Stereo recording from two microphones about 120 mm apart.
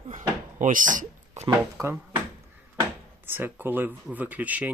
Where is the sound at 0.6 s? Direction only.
90° right.